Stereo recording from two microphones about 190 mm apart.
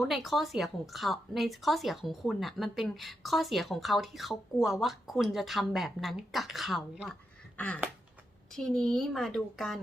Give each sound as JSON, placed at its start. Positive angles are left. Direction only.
{"t": 0.0, "sound": "a woman's voice", "side_deg": 0}
{"t": 7.5, "sound": "a sound", "side_deg": 10}
{"t": 8.5, "sound": "a woman's voice", "side_deg": 5}